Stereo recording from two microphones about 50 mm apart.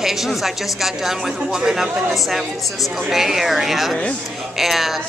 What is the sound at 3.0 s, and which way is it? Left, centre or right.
A woman's voice, centre.